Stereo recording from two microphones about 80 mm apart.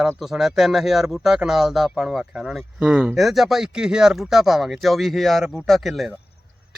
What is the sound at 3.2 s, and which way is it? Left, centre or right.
Speech, centre.